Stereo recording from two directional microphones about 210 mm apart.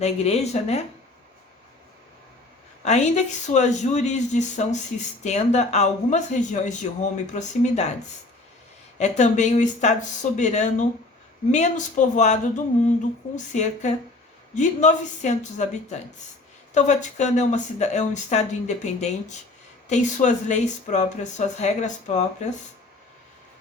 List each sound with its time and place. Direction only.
0.0 s speech: 30° left (ahead or behind)
2.8 s speech: 30° left (ahead or behind)
9.0 s speech: 35° left (ahead or behind)